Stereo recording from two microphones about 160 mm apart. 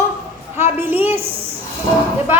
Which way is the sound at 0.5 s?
15° right (ahead or behind).